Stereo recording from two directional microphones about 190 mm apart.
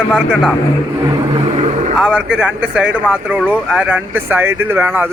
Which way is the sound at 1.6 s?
40° right (ahead or behind).